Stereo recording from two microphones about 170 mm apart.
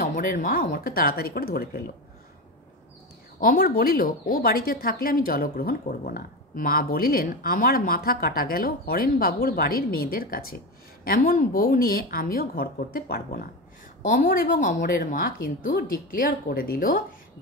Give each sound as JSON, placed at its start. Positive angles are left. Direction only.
{"t": 0.0, "sound": "speech", "side_deg": 50}
{"t": 3.3, "sound": "speech", "side_deg": 60}